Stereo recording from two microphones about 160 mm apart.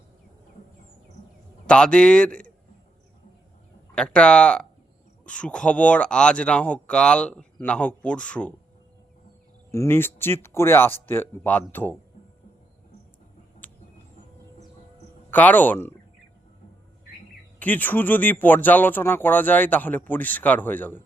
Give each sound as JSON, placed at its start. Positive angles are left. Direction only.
{"t": 1.6, "sound": "speech", "side_deg": 5}
{"t": 3.9, "sound": "speech", "side_deg": 5}
{"t": 9.7, "sound": "speech", "side_deg": 15}
{"t": 13.6, "sound": "a sound", "side_deg": 10}
{"t": 15.3, "sound": "speech", "side_deg": 10}
{"t": 17.6, "sound": "speech", "side_deg": 10}